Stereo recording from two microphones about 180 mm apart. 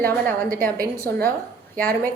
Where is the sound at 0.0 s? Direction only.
10° left (ahead or behind).